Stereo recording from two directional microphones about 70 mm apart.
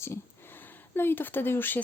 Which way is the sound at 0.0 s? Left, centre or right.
Left.